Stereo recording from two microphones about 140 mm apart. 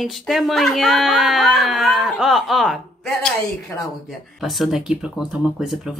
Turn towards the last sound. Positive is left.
turn(degrees=-5)  # may be behind; listen again after turning